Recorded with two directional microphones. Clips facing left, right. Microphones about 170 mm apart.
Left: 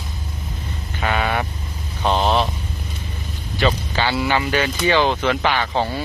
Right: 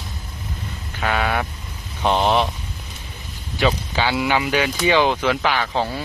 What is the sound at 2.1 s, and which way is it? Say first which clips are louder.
Vehicle: even; 10° right (ahead or behind).